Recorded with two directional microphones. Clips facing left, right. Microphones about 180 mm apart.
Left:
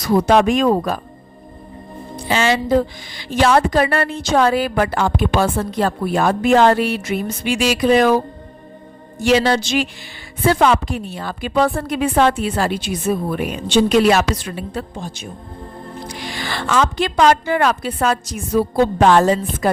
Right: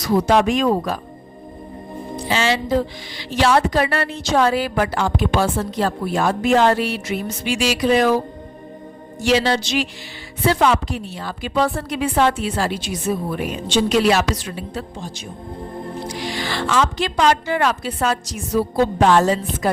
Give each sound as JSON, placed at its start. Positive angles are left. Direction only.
{"t": 0.0, "sound": "a woman's voice", "side_deg": 55}
{"t": 2.2, "sound": "a woman's voice", "side_deg": 50}
{"t": 9.2, "sound": "a woman's voice", "side_deg": 50}